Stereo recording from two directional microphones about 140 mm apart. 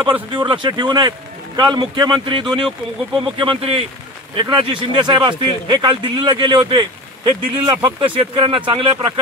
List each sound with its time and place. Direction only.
0.3 s a man's voice: 35° right (ahead or behind)